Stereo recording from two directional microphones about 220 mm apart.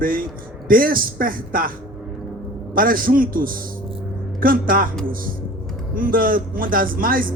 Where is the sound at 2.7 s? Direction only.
40° right (ahead or behind).